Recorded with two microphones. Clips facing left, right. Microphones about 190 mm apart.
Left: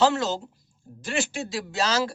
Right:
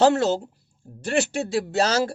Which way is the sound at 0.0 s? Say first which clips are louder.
Right 4 dB; 55° right (ahead or behind).